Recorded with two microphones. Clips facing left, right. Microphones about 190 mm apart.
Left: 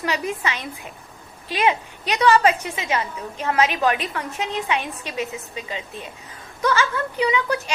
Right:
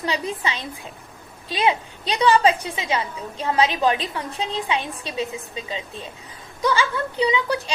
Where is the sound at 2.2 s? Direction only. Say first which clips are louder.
Even; 30° right (ahead or behind).